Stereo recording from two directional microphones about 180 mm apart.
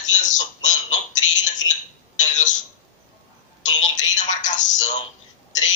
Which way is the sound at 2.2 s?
45° left (ahead or behind).